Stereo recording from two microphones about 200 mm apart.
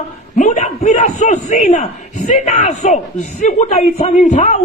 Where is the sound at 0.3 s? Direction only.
35° left (ahead or behind).